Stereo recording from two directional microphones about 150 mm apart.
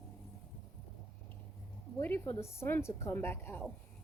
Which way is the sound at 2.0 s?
15° left (ahead or behind).